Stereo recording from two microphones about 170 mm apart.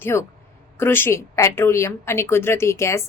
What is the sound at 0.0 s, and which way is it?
Speech, 15° left (ahead or behind).